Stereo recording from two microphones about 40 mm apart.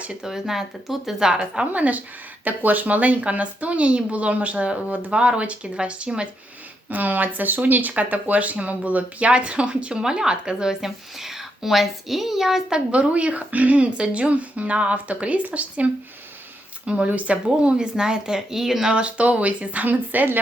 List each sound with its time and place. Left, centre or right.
0.3 s a woman's voice: centre
1.3 s speech: right
1.7 s speech: right
6.9 s a woman's voice: right; by 12.6 s centre
12.9 s speech: right
13.9 s speech: right; by 18.9 s centre
18.9 s speech: right